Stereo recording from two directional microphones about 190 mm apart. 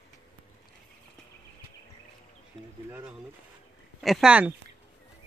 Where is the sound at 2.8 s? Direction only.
10° right (ahead or behind).